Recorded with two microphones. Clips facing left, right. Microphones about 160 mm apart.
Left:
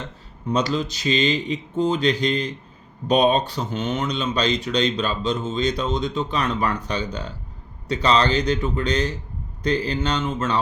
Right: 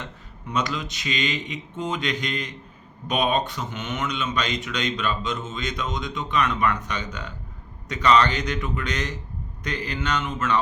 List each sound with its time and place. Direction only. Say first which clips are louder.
0.0 s speech: left 5 dB; 35° left (ahead or behind)